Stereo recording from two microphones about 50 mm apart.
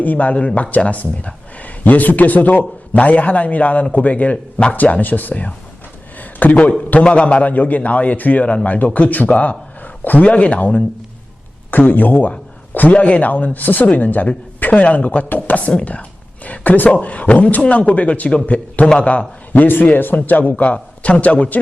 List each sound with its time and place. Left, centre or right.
0.0 s speech: left
5.3 s a man's voice: left
11.7 s speech: left
19.5 s speech: left